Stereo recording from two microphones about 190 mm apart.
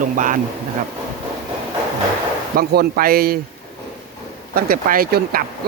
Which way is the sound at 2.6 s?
50° right (ahead or behind).